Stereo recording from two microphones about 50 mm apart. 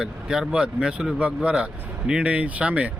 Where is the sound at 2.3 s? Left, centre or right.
Right.